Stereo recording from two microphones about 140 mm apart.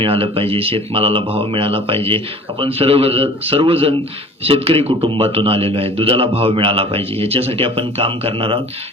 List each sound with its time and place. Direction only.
0.0 s a man's voice: 40° right (ahead or behind)